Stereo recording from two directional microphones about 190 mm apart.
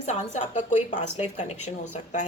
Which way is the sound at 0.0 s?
40° left (ahead or behind).